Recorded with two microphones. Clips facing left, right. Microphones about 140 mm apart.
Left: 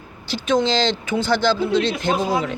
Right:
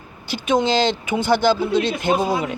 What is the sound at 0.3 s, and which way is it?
Speech, 15° right (ahead or behind).